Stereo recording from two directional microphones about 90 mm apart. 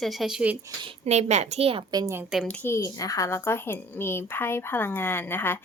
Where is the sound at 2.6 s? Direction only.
35° left (ahead or behind).